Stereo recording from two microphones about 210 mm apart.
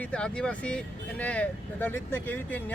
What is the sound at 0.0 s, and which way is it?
Speech, 5° left (ahead or behind).